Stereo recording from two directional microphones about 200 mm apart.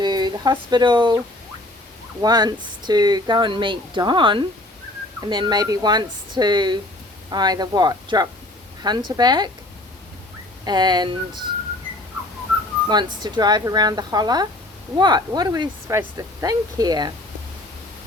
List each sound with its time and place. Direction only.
0.0 s a sound: 20° right (ahead or behind)
0.7 s speech: 20° right (ahead or behind)
2.2 s speech: 20° right (ahead or behind)
10.7 s speech: 20° right (ahead or behind)
13.2 s speech: 20° right (ahead or behind)